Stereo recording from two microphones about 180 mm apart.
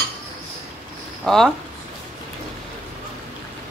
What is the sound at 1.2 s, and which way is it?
Speech, centre (ahead or behind).